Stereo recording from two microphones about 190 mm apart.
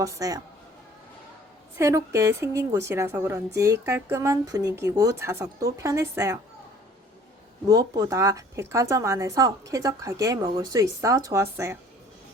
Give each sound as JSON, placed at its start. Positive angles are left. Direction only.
{"t": 0.0, "sound": "a woman's voice", "side_deg": -20}
{"t": 1.8, "sound": "a woman's voice", "side_deg": -15}
{"t": 7.7, "sound": "a woman's voice", "side_deg": -20}